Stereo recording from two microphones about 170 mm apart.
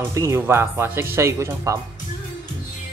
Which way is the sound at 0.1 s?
15° right (ahead or behind).